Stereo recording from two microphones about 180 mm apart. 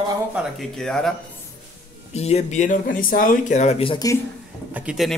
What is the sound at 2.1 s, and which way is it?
Speech, 35° left (ahead or behind).